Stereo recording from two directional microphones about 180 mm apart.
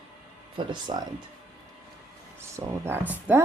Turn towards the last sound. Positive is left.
turn(degrees=-10)  # may be behind; listen again after turning